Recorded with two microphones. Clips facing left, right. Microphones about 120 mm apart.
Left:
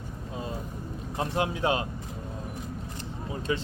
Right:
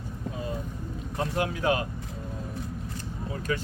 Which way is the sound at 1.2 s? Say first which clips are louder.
Even; 25° left (ahead or behind).